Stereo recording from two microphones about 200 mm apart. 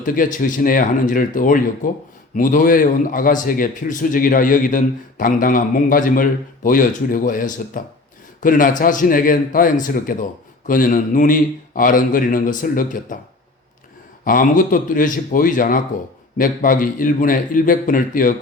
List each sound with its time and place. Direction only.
0.0 s a man's voice: 40° left (ahead or behind)
14.3 s speech: 40° left (ahead or behind)